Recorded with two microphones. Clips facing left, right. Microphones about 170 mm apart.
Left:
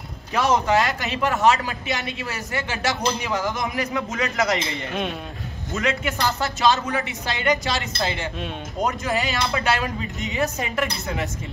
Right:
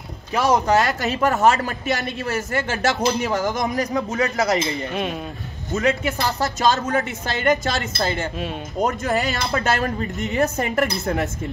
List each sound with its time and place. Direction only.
0.4 s speech: 35° right (ahead or behind)
4.9 s speech: centre (ahead or behind)
5.8 s speech: 35° right (ahead or behind)